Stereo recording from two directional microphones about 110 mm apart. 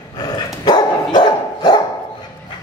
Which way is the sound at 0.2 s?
40° left (ahead or behind).